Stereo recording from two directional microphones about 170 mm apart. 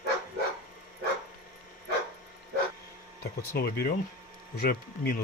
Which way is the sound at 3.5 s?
65° left (ahead or behind).